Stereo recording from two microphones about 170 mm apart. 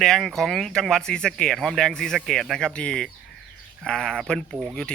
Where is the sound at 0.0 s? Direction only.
Centre (ahead or behind).